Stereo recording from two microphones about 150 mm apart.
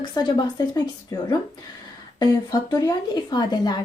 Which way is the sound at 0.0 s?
30° left (ahead or behind).